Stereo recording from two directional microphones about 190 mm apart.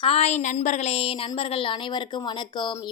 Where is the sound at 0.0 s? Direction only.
30° left (ahead or behind).